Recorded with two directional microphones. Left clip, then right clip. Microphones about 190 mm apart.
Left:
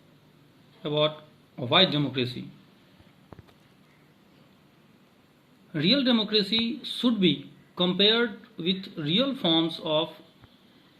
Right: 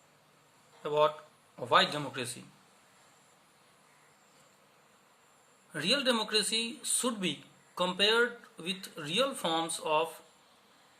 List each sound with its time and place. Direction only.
0.8 s a man's voice: 15° right (ahead or behind)
5.7 s speech: 25° right (ahead or behind)